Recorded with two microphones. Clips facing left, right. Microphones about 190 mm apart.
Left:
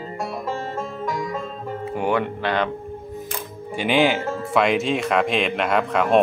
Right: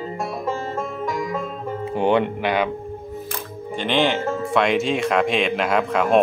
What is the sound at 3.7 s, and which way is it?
Speech, 10° left (ahead or behind).